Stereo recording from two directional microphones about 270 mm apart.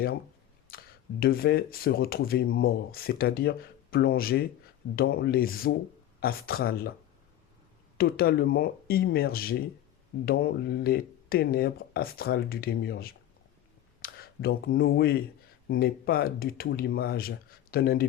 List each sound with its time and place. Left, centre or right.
0.7 s a sound: left
1.2 s speech: left
7.9 s speech: left